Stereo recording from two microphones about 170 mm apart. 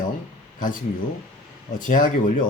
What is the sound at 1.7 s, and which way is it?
Speech, 50° left (ahead or behind).